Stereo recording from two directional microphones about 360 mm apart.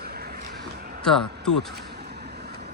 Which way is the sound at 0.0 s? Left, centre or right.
Right.